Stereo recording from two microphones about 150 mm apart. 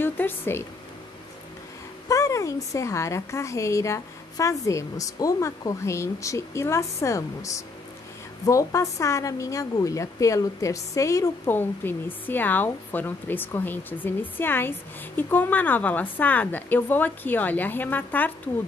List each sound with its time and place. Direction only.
0.0 s a woman's voice: 15° left (ahead or behind)
2.0 s a woman's voice: 20° left (ahead or behind)